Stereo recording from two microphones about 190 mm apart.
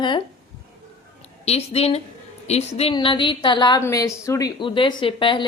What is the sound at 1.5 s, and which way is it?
A woman's voice, 30° left (ahead or behind).